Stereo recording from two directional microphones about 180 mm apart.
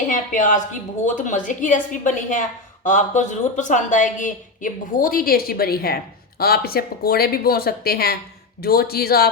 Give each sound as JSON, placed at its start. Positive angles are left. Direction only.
{"t": 0.1, "sound": "a woman's voice", "side_deg": 45}